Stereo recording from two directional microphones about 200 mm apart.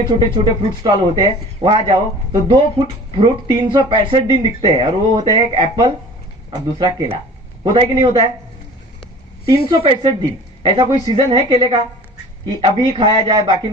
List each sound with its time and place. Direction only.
0.1 s speech: 20° right (ahead or behind)
9.6 s speech: 25° right (ahead or behind)